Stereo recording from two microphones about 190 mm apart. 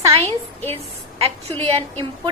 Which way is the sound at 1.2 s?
30° right (ahead or behind).